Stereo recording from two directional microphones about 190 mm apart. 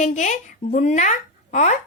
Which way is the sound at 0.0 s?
40° left (ahead or behind).